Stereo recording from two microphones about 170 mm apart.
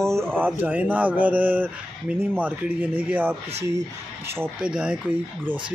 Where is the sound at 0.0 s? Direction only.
15° right (ahead or behind).